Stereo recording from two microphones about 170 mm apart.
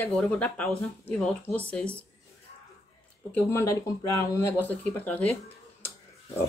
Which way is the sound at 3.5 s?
15° left (ahead or behind).